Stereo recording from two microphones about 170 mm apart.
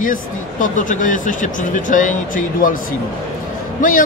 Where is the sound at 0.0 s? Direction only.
50° left (ahead or behind).